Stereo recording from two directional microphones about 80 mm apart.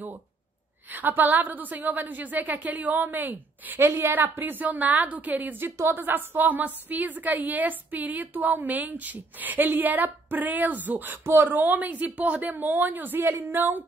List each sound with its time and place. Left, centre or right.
0.8 s a woman's voice: right